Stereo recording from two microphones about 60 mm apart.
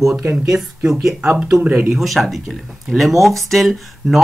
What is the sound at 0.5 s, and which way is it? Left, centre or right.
Speech, centre.